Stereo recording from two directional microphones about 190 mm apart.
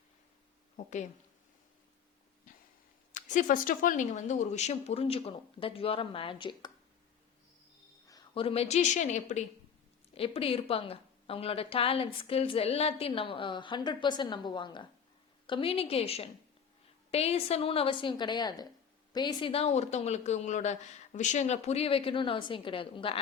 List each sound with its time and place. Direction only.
3.1 s a man's voice: 40° left (ahead or behind); by 6.7 s 25° left (ahead or behind)
8.0 s a woman's voice: 25° left (ahead or behind); by 9.4 s 40° left (ahead or behind)
10.2 s a woman's voice: 30° left (ahead or behind)